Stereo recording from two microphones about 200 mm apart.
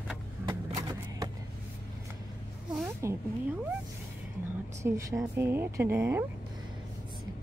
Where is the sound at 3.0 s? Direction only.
15° right (ahead or behind).